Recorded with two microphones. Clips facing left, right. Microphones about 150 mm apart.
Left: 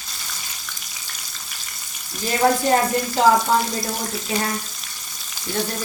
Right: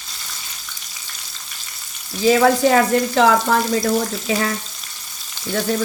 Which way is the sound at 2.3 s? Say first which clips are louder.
Right 4 dB; 90° right.